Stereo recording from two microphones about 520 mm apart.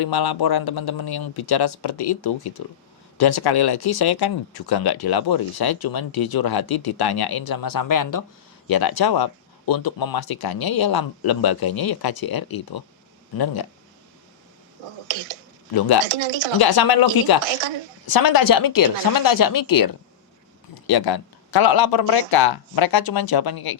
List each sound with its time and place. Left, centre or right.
0.0 s speech: left
14.8 s speech: right
15.7 s speech: left
16.0 s speech: right
16.6 s speech: left
17.4 s speech: right
18.0 s speech: left